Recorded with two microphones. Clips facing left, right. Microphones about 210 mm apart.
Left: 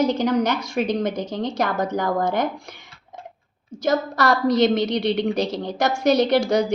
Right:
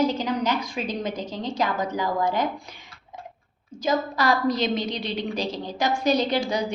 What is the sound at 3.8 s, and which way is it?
A woman's voice, 70° left (ahead or behind).